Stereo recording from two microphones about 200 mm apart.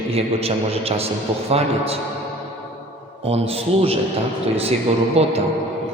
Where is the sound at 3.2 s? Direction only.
30° right (ahead or behind).